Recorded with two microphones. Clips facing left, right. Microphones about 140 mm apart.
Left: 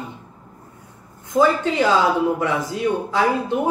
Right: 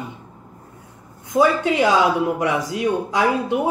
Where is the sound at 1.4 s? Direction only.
15° right (ahead or behind).